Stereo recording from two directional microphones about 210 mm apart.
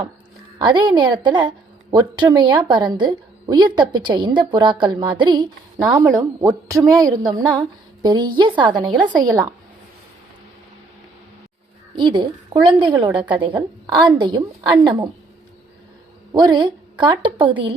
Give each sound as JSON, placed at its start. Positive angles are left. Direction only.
{"t": 0.6, "sound": "a woman's voice", "side_deg": -20}
{"t": 11.9, "sound": "a woman's voice", "side_deg": -20}
{"t": 16.3, "sound": "a woman's voice", "side_deg": -20}